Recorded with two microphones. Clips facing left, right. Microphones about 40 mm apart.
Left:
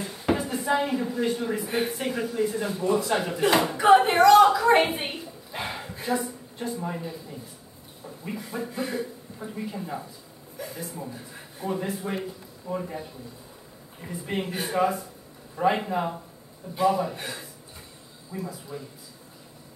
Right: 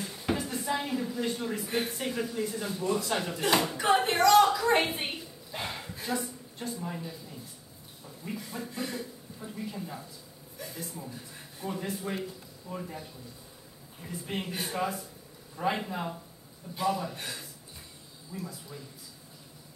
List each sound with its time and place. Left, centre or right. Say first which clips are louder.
0.0 s a man's voice: left 5 dB; left
2.8 s a man's voice: left 5 dB; centre
3.9 s a sound: left 6 dB; centre
6.6 s a man's voice: left 5 dB; left
10.6 s a man's voice: left 5 dB; centre
14.1 s a man's voice: left 5 dB; centre